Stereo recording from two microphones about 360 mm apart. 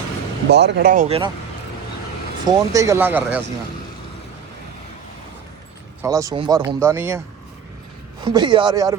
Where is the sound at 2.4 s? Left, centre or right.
Centre.